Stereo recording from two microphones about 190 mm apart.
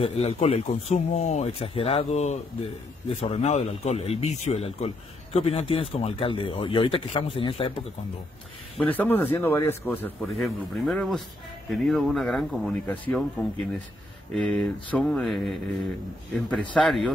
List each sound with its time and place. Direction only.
0.0 s speech: 30° left (ahead or behind)
8.7 s speech: 10° left (ahead or behind)
14.3 s speech: 5° left (ahead or behind)